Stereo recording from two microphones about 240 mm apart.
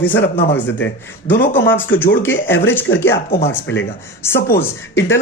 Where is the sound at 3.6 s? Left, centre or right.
Left.